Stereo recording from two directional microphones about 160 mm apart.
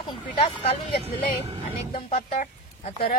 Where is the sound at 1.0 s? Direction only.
40° right (ahead or behind).